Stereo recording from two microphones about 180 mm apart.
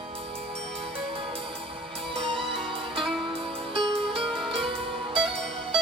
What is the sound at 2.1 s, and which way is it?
Music, 30° right (ahead or behind).